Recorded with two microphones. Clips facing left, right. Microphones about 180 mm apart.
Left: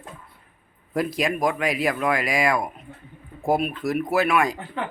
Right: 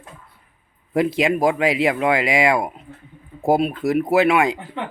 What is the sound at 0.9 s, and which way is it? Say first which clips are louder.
Speech: right 5 dB; 25° right (ahead or behind).